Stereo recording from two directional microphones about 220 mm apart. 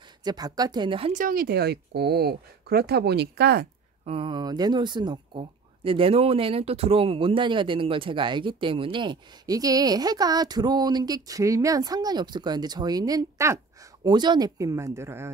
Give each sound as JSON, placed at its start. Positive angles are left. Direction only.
{"t": 0.2, "sound": "speech", "side_deg": -20}
{"t": 1.1, "sound": "speech", "side_deg": -40}
{"t": 4.0, "sound": "speech", "side_deg": -25}